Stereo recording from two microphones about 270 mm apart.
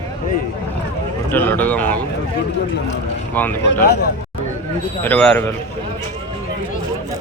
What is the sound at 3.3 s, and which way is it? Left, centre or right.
Speech, centre.